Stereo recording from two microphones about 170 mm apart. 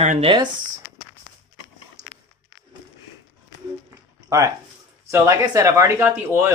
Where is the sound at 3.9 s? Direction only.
20° right (ahead or behind).